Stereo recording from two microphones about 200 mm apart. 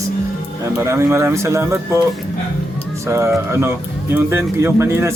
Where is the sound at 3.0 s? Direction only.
15° right (ahead or behind).